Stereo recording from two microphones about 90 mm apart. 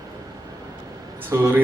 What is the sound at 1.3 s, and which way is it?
Speech, 30° right (ahead or behind).